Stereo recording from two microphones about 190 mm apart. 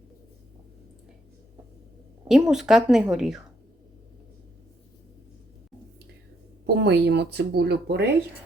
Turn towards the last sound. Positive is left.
turn(degrees=-60)  # may be behind; listen again after turning